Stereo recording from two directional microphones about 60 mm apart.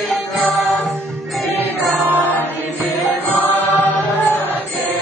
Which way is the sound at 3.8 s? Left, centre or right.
Left.